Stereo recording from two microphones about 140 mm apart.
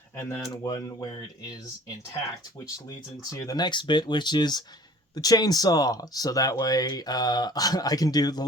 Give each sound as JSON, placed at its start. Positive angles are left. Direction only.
{"t": 0.2, "sound": "speech", "side_deg": 15}
{"t": 3.3, "sound": "speech", "side_deg": 30}